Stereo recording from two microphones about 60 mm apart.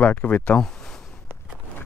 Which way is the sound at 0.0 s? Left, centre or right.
Left.